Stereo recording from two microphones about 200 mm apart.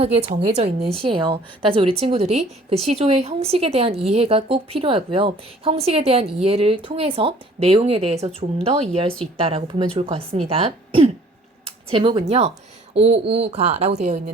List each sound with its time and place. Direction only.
0.0 s a woman's voice: 30° right (ahead or behind)